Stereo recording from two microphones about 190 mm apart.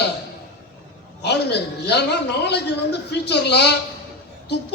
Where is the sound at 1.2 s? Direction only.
60° left (ahead or behind).